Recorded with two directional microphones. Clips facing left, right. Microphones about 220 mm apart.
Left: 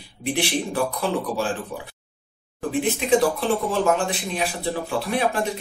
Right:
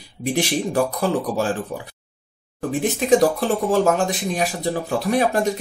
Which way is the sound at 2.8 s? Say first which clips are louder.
Right 3 dB; 40° right (ahead or behind).